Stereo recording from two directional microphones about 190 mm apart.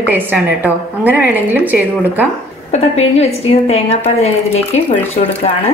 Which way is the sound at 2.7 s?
35° left (ahead or behind).